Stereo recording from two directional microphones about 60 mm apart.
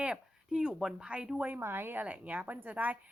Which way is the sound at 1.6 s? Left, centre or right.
Right.